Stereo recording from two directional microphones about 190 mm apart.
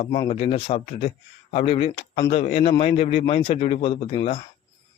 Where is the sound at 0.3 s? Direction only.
30° left (ahead or behind).